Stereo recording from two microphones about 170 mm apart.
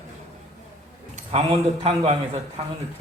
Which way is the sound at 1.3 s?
35° right (ahead or behind).